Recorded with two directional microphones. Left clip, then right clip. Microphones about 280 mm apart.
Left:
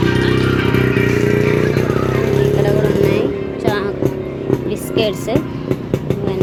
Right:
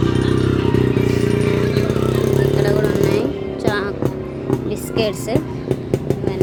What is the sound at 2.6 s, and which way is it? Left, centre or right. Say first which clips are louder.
Music: left 2 dB; centre.